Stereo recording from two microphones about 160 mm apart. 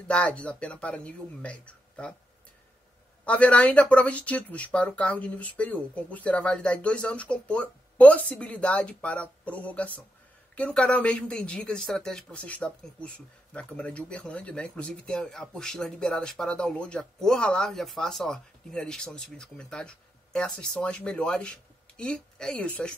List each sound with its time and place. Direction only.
0.1 s speech: 5° left (ahead or behind)
3.3 s a man's voice: 10° left (ahead or behind)